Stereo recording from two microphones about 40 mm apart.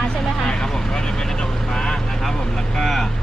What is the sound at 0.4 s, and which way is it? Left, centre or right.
Vehicle, centre.